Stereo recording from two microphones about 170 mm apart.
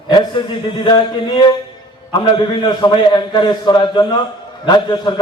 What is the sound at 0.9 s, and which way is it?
A man's voice, 30° left (ahead or behind).